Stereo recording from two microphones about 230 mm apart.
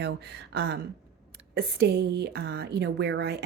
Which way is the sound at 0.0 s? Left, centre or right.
Right.